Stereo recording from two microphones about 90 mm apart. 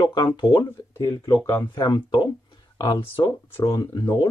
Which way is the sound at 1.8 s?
55° left (ahead or behind).